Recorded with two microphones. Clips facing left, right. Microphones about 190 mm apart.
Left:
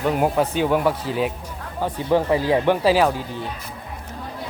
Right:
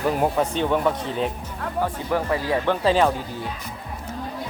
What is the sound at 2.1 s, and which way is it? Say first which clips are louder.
Speech: left 7 dB; 20° left (ahead or behind).